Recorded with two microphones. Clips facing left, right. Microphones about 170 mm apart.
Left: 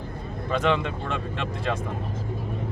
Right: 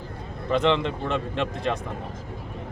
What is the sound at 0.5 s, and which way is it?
Speech, 20° right (ahead or behind).